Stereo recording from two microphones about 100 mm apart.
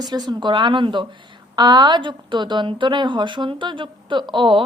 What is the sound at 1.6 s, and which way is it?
A woman's voice, 45° right (ahead or behind).